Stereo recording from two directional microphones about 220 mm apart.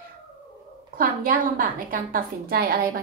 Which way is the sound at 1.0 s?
40° right (ahead or behind).